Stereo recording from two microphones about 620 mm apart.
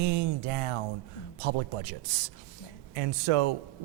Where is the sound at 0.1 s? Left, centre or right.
Right.